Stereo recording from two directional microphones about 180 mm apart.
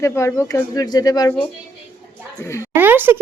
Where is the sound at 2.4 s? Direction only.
15° left (ahead or behind).